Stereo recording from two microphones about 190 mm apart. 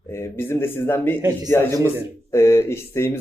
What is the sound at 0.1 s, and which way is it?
A man's voice, 15° left (ahead or behind).